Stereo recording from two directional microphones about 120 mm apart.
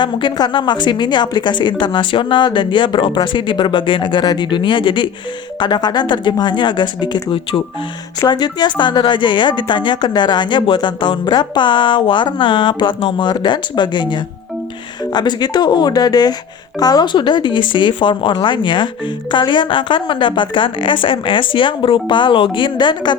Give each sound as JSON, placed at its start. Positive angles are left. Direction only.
{"t": 0.0, "sound": "a woman's voice", "side_deg": 40}